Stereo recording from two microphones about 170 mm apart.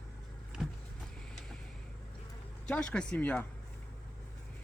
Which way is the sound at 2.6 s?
5° left (ahead or behind).